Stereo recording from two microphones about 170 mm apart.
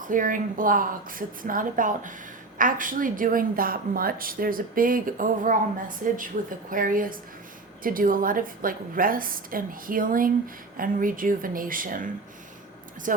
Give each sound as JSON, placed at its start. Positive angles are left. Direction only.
{"t": 0.0, "sound": "a woman's voice", "side_deg": -50}
{"t": 13.1, "sound": "speech", "side_deg": -50}